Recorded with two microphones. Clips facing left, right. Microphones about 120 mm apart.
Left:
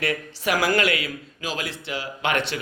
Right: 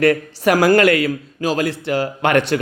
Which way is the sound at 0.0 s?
45° right (ahead or behind).